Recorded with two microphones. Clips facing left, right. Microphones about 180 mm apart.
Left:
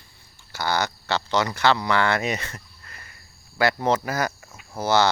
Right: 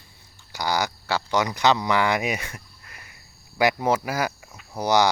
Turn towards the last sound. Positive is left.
turn(degrees=-15)  # may be behind; listen again after turning